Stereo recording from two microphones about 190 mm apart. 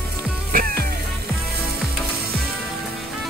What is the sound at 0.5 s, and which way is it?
Music, 50° right (ahead or behind).